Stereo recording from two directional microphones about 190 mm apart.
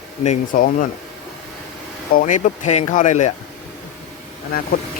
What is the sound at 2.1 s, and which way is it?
Speech, 40° left (ahead or behind).